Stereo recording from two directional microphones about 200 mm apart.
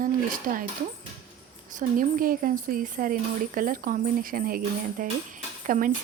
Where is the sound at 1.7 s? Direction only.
40° right (ahead or behind).